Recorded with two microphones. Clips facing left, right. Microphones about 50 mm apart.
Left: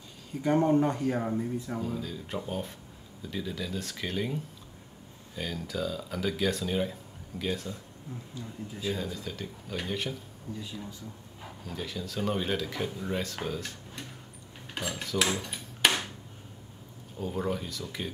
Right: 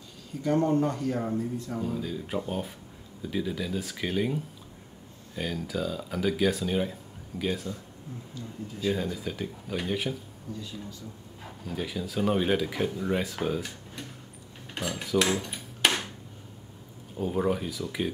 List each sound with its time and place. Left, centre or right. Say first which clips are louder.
0.4 s speech: even; centre
1.8 s speech: right 3 dB; centre
8.8 s speech: right 5 dB; centre
11.4 s speech: right 4 dB; centre
14.7 s a sound: right 4 dB; centre
17.2 s speech: right 5 dB; centre